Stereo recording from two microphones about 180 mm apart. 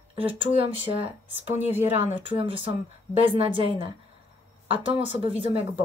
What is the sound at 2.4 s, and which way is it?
A woman's voice, 30° right (ahead or behind).